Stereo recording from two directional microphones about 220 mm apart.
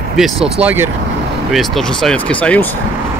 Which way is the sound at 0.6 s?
10° right (ahead or behind).